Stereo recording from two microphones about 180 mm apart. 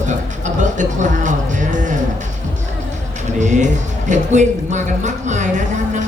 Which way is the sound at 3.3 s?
40° right (ahead or behind).